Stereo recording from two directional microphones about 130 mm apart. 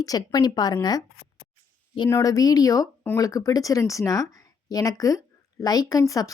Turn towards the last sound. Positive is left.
turn(degrees=25)  # may be behind; listen again after turning